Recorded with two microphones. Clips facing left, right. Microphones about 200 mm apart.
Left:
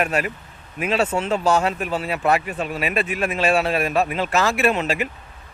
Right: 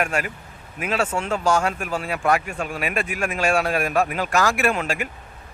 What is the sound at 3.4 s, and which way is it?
A man's voice, centre (ahead or behind).